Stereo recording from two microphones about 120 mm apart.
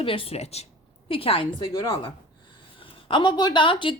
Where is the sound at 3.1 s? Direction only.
40° left (ahead or behind).